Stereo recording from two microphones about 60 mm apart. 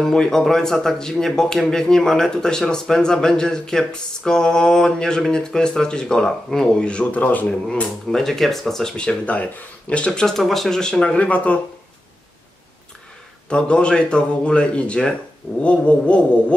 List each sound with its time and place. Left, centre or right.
0.0 s a man's voice: centre
8.1 s speech: centre
9.2 s a man's voice: left
13.5 s a man's voice: centre